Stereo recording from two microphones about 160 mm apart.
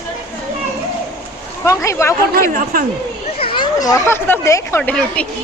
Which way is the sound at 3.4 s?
35° left (ahead or behind).